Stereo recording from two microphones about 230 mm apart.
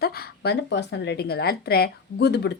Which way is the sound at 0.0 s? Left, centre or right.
Left.